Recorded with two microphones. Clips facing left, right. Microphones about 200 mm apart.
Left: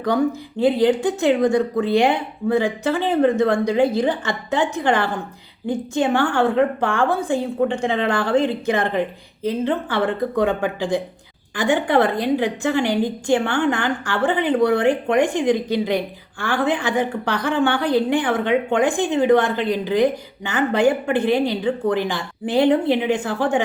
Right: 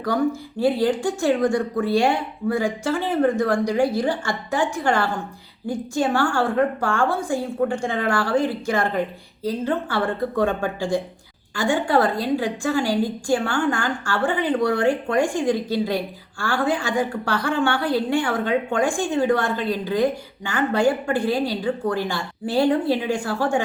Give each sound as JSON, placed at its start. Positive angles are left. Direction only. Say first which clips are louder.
{"t": 0.6, "sound": "a woman's voice", "louder": "left 3 dB", "side_deg": 20}